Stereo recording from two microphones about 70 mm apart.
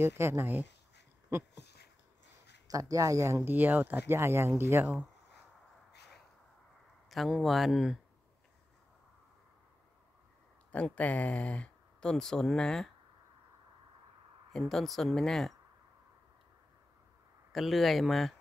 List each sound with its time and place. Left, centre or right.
0.0 s speech: right
2.7 s speech: right
3.4 s speech: right
7.1 s speech: centre
10.7 s speech: left
14.5 s speech: centre
17.5 s speech: centre